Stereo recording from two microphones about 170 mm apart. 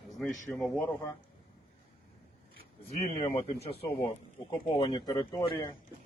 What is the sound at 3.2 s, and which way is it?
A man's voice, 40° left (ahead or behind).